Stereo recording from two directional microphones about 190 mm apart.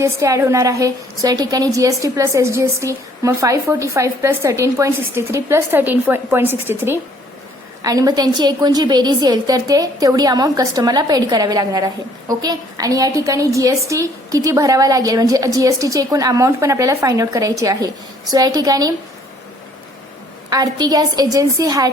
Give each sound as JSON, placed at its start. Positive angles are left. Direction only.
{"t": 0.0, "sound": "a woman's voice", "side_deg": -15}
{"t": 20.5, "sound": "a woman's voice", "side_deg": -20}